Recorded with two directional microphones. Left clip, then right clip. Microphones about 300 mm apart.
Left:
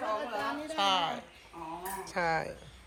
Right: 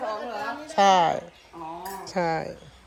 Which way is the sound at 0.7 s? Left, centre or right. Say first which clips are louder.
Right 11 dB; right.